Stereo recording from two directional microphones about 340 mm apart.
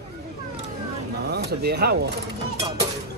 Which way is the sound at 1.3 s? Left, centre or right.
Right.